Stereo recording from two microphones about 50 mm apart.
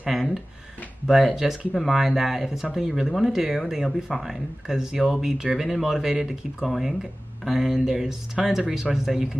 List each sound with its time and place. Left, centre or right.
0.0 s speech: centre